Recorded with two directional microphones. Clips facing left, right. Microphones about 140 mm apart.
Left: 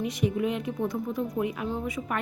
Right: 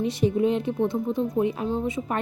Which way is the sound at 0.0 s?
30° right (ahead or behind).